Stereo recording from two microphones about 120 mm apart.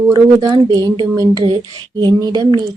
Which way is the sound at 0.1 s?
35° right (ahead or behind).